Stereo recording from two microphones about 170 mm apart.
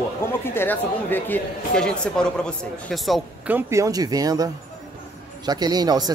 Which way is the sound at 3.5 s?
15° right (ahead or behind).